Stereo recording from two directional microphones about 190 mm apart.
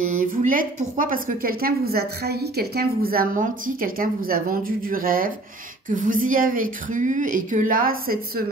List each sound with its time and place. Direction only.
0.0 s a woman's voice: 45° right (ahead or behind)